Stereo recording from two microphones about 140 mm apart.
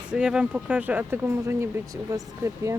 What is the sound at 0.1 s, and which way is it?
Speech, 5° right (ahead or behind).